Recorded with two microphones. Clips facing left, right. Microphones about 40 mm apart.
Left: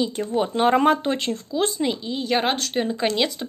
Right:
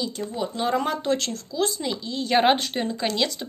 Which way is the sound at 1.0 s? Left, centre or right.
Left.